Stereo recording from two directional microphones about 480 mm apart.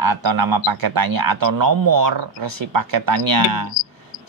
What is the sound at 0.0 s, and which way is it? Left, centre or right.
Speech, right.